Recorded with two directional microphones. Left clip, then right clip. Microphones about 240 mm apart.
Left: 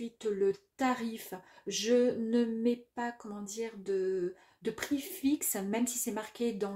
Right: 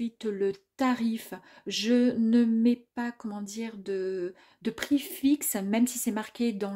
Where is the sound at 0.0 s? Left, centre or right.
Right.